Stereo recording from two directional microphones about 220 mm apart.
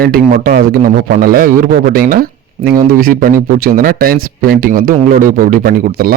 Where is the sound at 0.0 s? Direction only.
45° right (ahead or behind).